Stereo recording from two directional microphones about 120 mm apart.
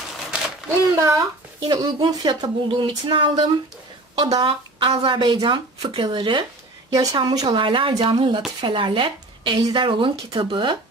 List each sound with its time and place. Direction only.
0.7 s speech: 25° right (ahead or behind); by 10.8 s 45° right (ahead or behind)